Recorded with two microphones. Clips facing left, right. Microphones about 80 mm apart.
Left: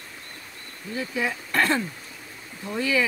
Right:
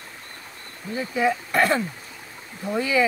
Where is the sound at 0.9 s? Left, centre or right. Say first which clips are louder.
Right 5 dB; centre.